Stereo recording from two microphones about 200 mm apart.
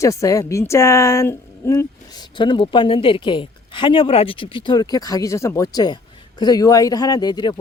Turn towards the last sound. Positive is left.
turn(degrees=20)  # may be behind; listen again after turning